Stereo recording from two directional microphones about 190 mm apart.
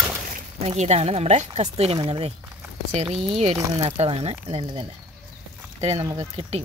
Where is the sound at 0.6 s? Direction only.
35° right (ahead or behind).